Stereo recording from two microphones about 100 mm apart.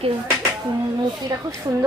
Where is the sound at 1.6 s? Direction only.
40° right (ahead or behind).